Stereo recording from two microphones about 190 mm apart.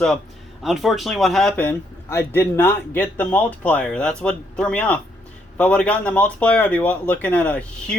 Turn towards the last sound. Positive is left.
turn(degrees=5)  # may be behind; listen again after turning